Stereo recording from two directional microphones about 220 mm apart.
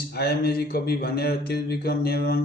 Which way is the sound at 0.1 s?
45° left (ahead or behind).